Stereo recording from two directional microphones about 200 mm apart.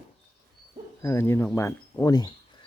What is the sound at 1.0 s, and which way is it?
Speech, 15° left (ahead or behind).